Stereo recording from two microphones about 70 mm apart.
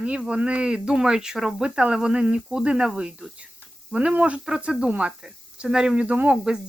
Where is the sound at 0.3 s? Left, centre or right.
Centre.